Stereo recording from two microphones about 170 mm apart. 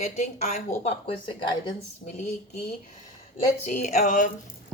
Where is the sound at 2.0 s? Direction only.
55° left (ahead or behind).